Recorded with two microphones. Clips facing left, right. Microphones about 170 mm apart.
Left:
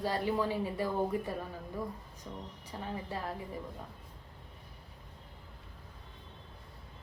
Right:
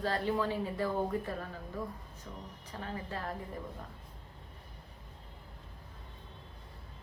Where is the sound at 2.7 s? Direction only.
15° left (ahead or behind).